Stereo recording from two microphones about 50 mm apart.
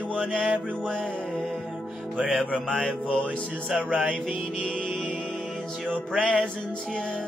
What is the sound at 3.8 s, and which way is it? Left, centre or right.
Music, right.